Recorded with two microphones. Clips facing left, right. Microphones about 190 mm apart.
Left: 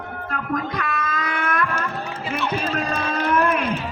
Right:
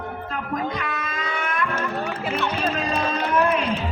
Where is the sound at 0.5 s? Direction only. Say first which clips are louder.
Even; 25° right (ahead or behind).